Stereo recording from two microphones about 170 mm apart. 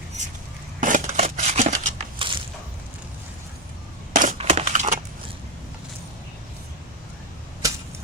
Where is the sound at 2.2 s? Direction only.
30° right (ahead or behind).